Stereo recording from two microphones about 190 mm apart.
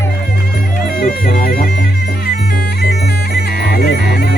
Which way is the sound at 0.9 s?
50° left (ahead or behind).